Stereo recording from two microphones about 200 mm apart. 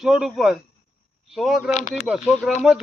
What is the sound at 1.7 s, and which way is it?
Speech, 40° left (ahead or behind).